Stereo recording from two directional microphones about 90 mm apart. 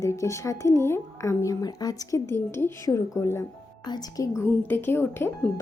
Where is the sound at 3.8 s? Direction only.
50° left (ahead or behind).